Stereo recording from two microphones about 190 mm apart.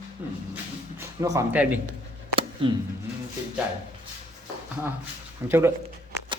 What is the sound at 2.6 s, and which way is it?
Speech, 25° right (ahead or behind).